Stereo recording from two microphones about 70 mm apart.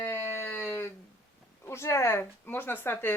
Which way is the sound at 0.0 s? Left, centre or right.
Left.